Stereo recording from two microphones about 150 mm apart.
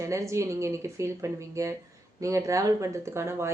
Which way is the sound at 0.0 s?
20° right (ahead or behind).